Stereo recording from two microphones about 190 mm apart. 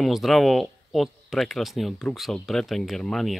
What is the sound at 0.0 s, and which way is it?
Speech, centre (ahead or behind).